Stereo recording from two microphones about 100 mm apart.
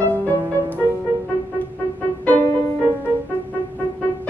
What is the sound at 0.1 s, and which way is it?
Music, 15° left (ahead or behind).